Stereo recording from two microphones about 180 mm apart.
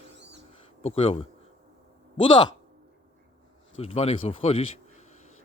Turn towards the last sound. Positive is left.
turn(degrees=35)  # may be behind; listen again after turning